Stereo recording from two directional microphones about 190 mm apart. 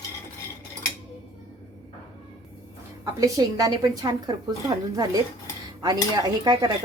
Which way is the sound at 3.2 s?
20° right (ahead or behind).